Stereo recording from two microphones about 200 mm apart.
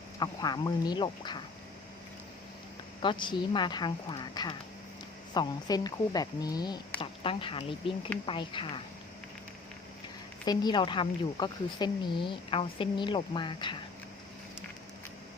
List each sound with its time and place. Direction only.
0.2 s a woman's voice: 20° left (ahead or behind)
3.0 s a woman's voice: 25° left (ahead or behind)
10.4 s a woman's voice: 20° left (ahead or behind)